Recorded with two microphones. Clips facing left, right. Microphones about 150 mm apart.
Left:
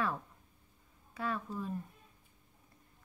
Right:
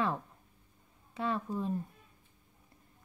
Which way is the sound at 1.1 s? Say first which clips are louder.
Right 3 dB; 25° right (ahead or behind).